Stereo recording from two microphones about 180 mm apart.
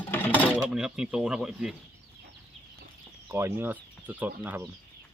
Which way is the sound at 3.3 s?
15° right (ahead or behind).